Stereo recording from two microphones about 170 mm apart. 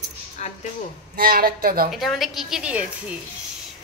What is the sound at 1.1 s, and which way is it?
Speech, 60° right (ahead or behind).